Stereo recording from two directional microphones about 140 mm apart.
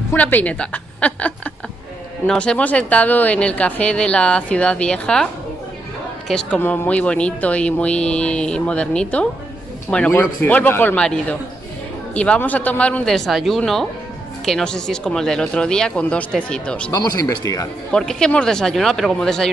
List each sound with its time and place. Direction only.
0.1 s a woman's voice: 10° left (ahead or behind)
16.9 s speech: 30° left (ahead or behind)
17.9 s speech: 5° left (ahead or behind)